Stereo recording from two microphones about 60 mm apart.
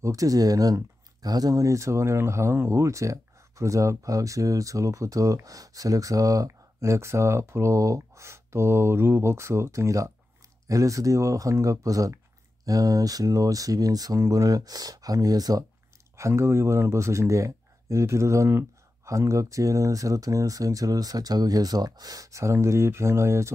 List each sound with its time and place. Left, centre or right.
0.0 s speech: right
7.7 s speech: right
16.2 s speech: right